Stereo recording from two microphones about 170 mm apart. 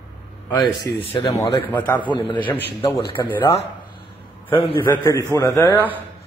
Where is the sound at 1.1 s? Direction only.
30° left (ahead or behind).